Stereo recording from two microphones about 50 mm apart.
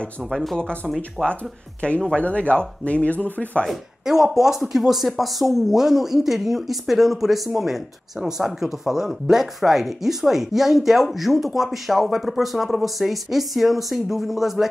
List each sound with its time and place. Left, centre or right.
0.3 s speech: centre
1.2 s speech: left
4.0 s speech: centre